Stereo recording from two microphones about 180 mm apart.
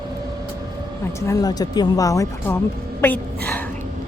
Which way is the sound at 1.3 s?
20° left (ahead or behind).